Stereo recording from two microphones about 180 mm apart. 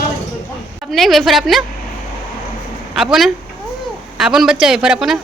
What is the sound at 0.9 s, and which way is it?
Speech, centre (ahead or behind).